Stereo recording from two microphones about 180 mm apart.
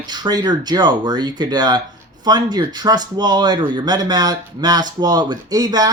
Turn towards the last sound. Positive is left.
turn(degrees=-20)  # may be behind; listen again after turning